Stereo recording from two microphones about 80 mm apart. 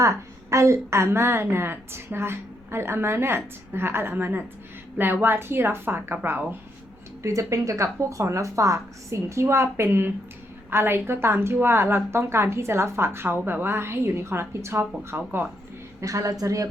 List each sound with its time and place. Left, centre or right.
0.0 s a woman's voice: right
7.2 s a woman's voice: right
16.0 s a woman's voice: right